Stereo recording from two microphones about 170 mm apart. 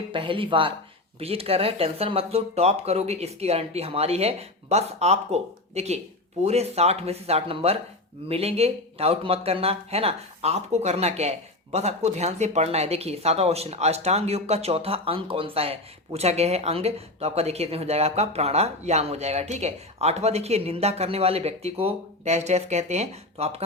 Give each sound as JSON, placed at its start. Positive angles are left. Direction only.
{"t": 0.1, "sound": "speech", "side_deg": -30}